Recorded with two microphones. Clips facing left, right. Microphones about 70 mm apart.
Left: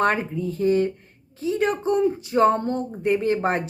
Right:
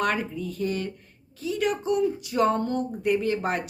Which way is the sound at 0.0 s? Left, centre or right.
Left.